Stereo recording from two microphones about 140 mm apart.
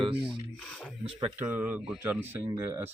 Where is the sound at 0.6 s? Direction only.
5° left (ahead or behind).